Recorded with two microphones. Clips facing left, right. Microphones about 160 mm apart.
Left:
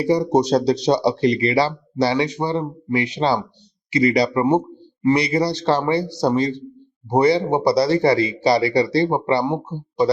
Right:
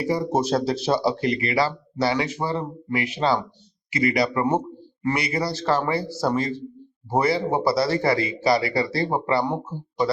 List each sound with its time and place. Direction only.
0.0 s speech: 20° left (ahead or behind)